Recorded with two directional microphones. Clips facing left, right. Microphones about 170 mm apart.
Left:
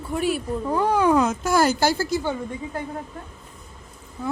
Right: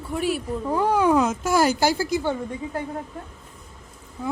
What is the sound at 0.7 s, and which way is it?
A woman's voice, 5° right (ahead or behind).